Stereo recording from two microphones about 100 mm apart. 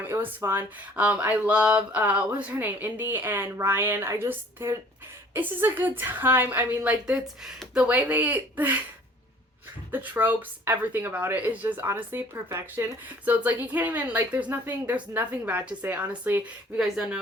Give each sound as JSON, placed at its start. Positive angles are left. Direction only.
{"t": 0.0, "sound": "speech", "side_deg": -20}
{"t": 9.9, "sound": "speech", "side_deg": -20}
{"t": 16.8, "sound": "speech", "side_deg": -5}